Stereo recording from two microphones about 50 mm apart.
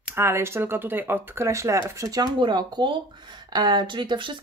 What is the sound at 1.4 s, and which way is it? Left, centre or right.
Speech, right.